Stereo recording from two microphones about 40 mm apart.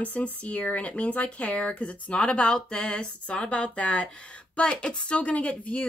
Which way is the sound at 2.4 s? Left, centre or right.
Left.